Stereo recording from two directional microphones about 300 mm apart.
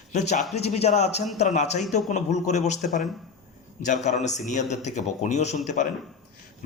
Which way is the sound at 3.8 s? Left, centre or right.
Left.